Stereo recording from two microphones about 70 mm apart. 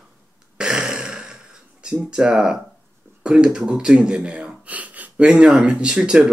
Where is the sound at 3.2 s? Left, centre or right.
Centre.